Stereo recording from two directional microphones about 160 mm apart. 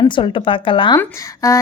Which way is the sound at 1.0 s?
15° left (ahead or behind).